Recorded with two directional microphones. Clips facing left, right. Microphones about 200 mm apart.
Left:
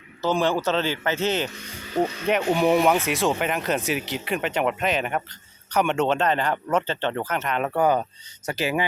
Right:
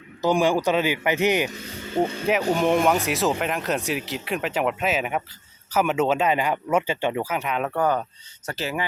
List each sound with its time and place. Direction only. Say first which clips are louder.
0.2 s a man's voice: right 2 dB; 15° right (ahead or behind)
1.9 s speech: right 1 dB; 30° right (ahead or behind)
2.5 s speech: left 2 dB; 5° left (ahead or behind)
7.7 s speech: left 4 dB; 10° left (ahead or behind)